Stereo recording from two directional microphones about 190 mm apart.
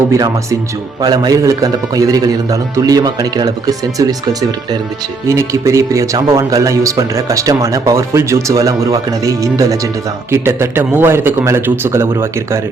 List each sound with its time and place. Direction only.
1.0 s a man's voice: 20° right (ahead or behind)